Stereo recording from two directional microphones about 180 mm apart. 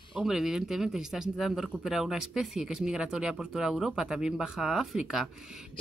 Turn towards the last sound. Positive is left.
turn(degrees=-5)  # may be behind; listen again after turning